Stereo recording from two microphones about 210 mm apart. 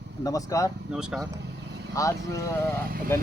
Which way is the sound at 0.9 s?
5° right (ahead or behind).